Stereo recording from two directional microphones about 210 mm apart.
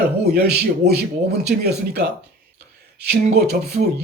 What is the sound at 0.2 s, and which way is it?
Speech, 50° right (ahead or behind).